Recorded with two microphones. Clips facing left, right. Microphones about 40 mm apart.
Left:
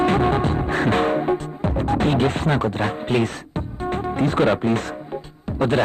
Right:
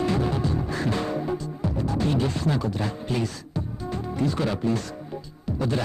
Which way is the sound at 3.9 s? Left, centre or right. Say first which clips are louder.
Left 6 dB; left.